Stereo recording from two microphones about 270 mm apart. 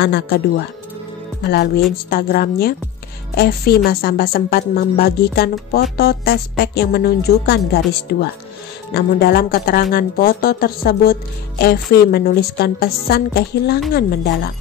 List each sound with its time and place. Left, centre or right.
1.4 s speech: left